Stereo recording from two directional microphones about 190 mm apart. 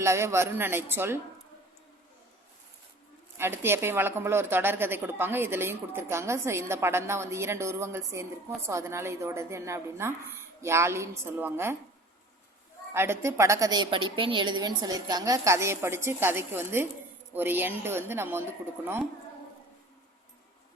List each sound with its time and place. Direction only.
0.0 s speech: 15° right (ahead or behind)
3.3 s speech: 10° right (ahead or behind)
12.9 s speech: 15° right (ahead or behind)